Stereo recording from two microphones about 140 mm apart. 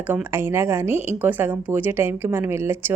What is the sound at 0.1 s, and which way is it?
Speech, 15° right (ahead or behind).